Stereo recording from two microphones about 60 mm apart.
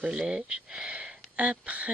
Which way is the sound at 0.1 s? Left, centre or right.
Centre.